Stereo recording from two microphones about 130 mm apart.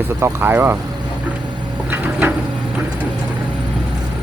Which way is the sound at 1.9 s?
15° right (ahead or behind).